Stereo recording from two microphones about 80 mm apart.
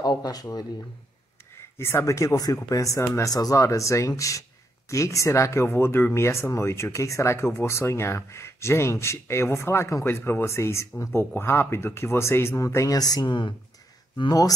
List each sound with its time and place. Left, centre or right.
0.0 s speech: left
1.8 s speech: left
12.9 s speech: left
13.3 s speech: left